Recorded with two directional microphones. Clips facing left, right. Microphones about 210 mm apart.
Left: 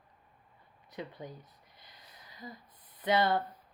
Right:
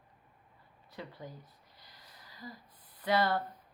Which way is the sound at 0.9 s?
20° left (ahead or behind).